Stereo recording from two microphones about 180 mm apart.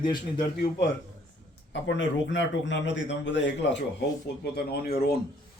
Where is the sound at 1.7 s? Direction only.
90° left.